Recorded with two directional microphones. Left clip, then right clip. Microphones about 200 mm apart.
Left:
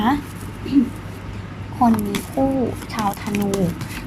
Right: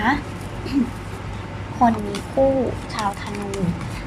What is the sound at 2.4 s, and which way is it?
Speech, 5° left (ahead or behind).